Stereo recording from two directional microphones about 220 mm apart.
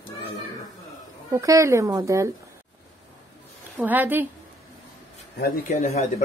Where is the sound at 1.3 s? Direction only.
15° right (ahead or behind).